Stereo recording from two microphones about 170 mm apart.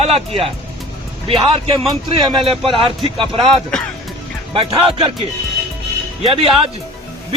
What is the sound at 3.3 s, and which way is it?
Speech, 5° left (ahead or behind).